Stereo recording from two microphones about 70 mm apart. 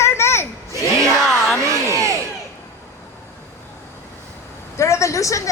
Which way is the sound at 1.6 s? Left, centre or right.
Right.